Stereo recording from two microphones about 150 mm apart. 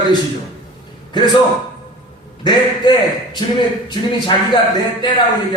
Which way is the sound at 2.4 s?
30° left (ahead or behind).